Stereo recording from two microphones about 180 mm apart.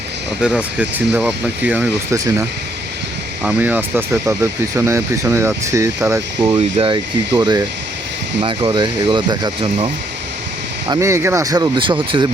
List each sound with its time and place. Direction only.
0.4 s speech: 5° right (ahead or behind); by 12.3 s 25° right (ahead or behind)